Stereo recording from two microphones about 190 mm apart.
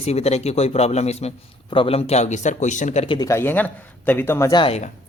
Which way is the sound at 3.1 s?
15° left (ahead or behind).